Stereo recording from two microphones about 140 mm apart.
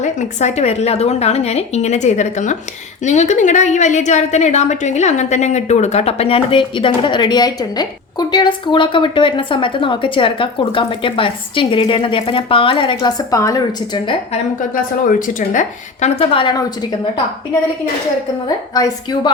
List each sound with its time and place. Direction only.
0.0 s a woman's voice: 60° left (ahead or behind); by 14.2 s 35° left (ahead or behind)
15.3 s a woman's voice: 65° left (ahead or behind); by 16.7 s 30° left (ahead or behind)
18.4 s a woman's voice: 30° left (ahead or behind)